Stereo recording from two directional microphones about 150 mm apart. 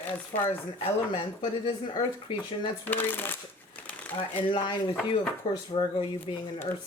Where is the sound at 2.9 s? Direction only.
15° left (ahead or behind).